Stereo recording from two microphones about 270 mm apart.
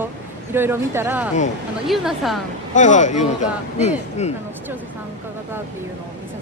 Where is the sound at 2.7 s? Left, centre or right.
Left.